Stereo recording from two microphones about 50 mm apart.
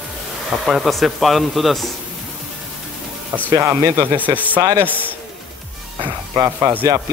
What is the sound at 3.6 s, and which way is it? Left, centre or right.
Speech, right.